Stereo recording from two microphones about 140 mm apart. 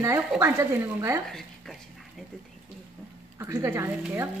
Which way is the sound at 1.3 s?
Centre (ahead or behind).